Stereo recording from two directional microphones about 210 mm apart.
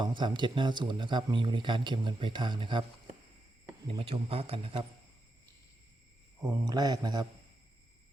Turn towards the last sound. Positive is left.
turn(degrees=-20)  # may be behind; listen again after turning